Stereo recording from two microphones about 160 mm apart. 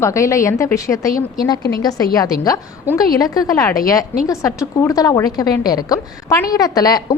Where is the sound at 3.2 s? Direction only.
20° left (ahead or behind).